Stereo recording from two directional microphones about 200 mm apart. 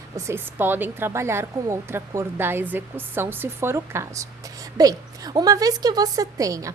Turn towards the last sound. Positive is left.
turn(degrees=-15)  # may be behind; listen again after turning